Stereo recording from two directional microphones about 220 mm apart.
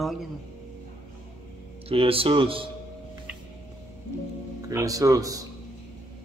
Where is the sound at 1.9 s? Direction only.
25° right (ahead or behind).